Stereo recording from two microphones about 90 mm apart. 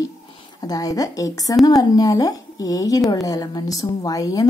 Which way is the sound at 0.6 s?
45° left (ahead or behind).